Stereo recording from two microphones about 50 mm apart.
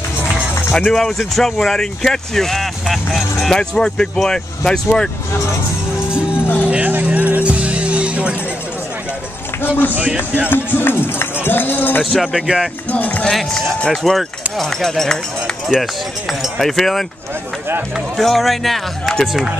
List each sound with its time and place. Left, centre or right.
0.7 s speech: centre
6.4 s music: left
6.9 s music: right
10.5 s speech: left
12.0 s speech: centre
12.9 s speech: left
13.3 s speech: centre